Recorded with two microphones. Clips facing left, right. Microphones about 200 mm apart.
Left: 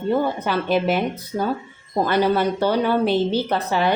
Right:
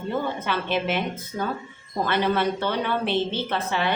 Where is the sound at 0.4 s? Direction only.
40° left (ahead or behind).